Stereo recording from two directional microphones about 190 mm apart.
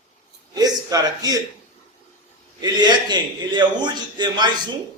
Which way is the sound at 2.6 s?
25° right (ahead or behind).